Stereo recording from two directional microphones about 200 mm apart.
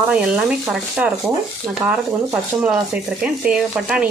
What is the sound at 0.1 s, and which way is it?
Speech, 5° right (ahead or behind).